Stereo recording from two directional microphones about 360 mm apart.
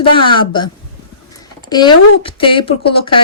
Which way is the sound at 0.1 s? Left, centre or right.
Centre.